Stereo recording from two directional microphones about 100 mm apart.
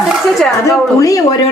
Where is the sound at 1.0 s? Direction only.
35° left (ahead or behind).